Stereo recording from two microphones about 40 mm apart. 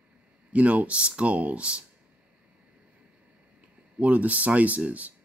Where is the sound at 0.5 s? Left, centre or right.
Right.